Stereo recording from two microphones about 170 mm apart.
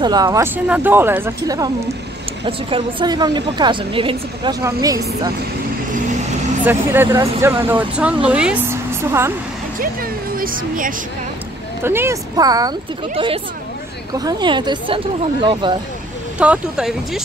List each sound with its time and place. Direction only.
0.0 s a woman's voice: 25° right (ahead or behind)
0.7 s speech: 10° right (ahead or behind)
2.4 s a woman's voice: 30° right (ahead or behind)
6.6 s speech: 15° right (ahead or behind)
10.3 s speech: 55° right (ahead or behind)
11.8 s a woman's voice: 15° right (ahead or behind)
13.1 s a woman's voice: 35° right (ahead or behind)
16.3 s speech: 5° right (ahead or behind)